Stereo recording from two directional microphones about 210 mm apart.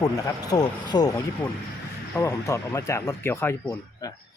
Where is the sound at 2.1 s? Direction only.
15° left (ahead or behind).